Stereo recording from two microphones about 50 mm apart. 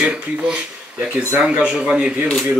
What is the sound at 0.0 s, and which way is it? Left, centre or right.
Speech, right.